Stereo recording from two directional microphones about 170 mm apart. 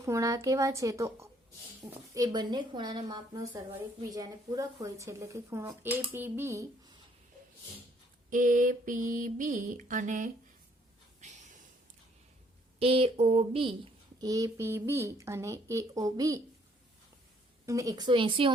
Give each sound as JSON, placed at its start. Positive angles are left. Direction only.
{"t": 0.0, "sound": "a child's voice", "side_deg": -20}
{"t": 8.3, "sound": "mantra", "side_deg": -50}
{"t": 11.2, "sound": "a sound", "side_deg": -45}
{"t": 12.8, "sound": "a sound", "side_deg": -35}
{"t": 14.2, "sound": "a child's voice", "side_deg": -20}
{"t": 17.7, "sound": "a child's voice", "side_deg": -20}